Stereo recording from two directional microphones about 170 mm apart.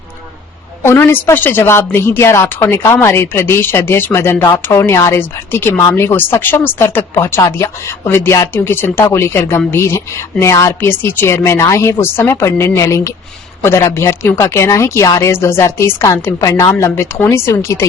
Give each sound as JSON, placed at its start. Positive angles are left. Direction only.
{"t": 0.8, "sound": "a woman's voice", "side_deg": 15}